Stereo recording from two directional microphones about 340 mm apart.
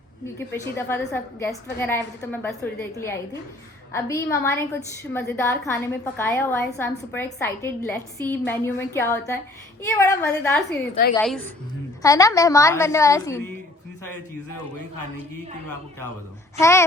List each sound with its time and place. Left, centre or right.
0.3 s a woman's voice: centre
10.7 s a woman's voice: left
11.1 s a woman's voice: centre
16.6 s a woman's voice: centre